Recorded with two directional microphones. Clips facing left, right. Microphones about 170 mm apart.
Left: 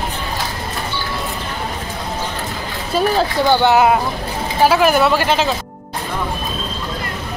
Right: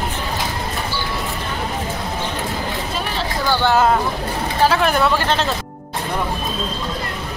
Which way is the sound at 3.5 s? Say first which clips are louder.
Left 2 dB; 15° left (ahead or behind).